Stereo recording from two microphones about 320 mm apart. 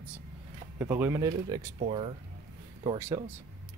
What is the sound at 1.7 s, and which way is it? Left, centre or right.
Speech, centre.